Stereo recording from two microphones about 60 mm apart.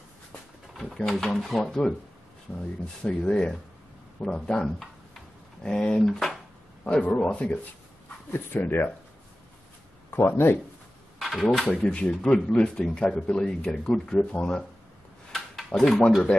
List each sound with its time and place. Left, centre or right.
0.3 s pigeon: centre
3.0 s speech: centre
7.1 s speech: centre
8.3 s speech: left
10.1 s speech: left
11.1 s speech: centre
11.7 s speech: left
15.3 s a sound: centre